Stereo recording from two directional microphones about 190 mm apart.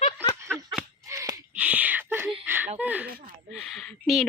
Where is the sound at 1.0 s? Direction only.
15° right (ahead or behind).